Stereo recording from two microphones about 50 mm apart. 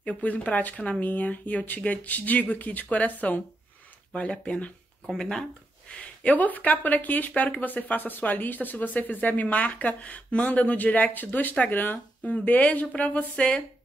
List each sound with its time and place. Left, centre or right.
0.0 s speech: left
4.1 s a woman's voice: centre
5.1 s speech: centre
5.9 s a woman's voice: left